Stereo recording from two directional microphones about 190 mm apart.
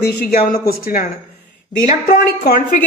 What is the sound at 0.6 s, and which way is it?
Speech, 50° left (ahead or behind).